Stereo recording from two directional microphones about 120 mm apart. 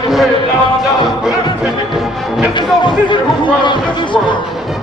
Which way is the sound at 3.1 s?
40° left (ahead or behind).